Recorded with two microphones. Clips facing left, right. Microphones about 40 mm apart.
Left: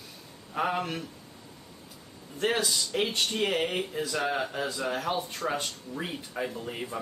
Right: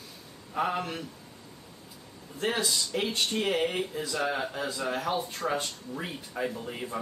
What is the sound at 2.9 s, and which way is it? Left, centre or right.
Speech, left.